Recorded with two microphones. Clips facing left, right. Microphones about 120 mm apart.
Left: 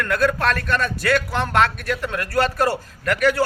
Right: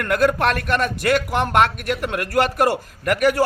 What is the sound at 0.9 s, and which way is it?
A man's voice, 15° right (ahead or behind).